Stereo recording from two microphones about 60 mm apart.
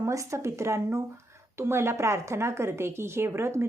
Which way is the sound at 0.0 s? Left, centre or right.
Right.